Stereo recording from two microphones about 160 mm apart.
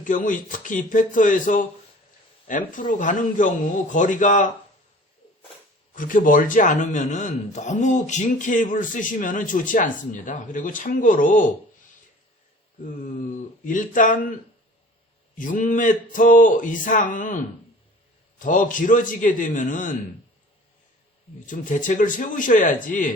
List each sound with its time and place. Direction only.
0.0 s a man's voice: 55° left (ahead or behind)
5.9 s a man's voice: 55° left (ahead or behind)
13.3 s speech: 55° left (ahead or behind)
15.4 s speech: 55° left (ahead or behind)
21.4 s speech: 55° left (ahead or behind)